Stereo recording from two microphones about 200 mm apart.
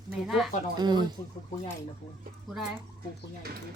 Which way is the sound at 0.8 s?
20° right (ahead or behind).